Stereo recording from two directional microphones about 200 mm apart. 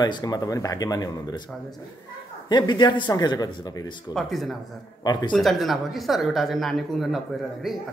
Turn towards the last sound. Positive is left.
turn(degrees=0)  # may be behind; listen again after turning